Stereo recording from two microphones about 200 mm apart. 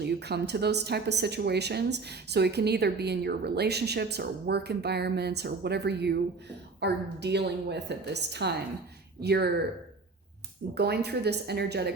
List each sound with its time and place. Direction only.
0.0 s a woman's voice: 55° right (ahead or behind)
10.8 s a woman's voice: 55° right (ahead or behind)